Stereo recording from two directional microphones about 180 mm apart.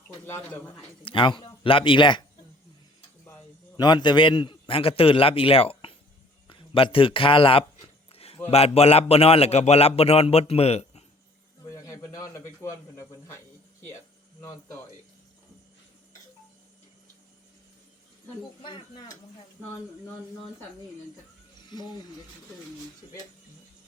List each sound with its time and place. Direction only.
0.3 s speech: 15° left (ahead or behind)
1.0 s a man's voice: 30° left (ahead or behind)
3.8 s a man's voice: 25° left (ahead or behind)
8.1 s a sound: 35° left (ahead or behind)
8.4 s a man's voice: 35° left (ahead or behind)
11.7 s a man's voice: 20° left (ahead or behind)
18.6 s a man's voice: 25° left (ahead or behind)
21.7 s speech: 25° left (ahead or behind)